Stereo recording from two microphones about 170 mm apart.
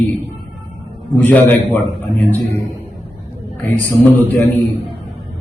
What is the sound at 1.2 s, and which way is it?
Speech, 10° left (ahead or behind).